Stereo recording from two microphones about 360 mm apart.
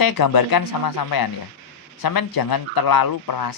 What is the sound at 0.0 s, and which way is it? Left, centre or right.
Speech, left.